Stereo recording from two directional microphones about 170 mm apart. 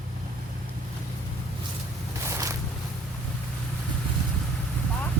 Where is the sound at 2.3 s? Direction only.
20° right (ahead or behind).